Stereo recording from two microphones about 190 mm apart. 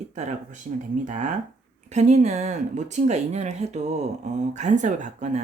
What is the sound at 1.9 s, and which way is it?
Speech, 35° right (ahead or behind).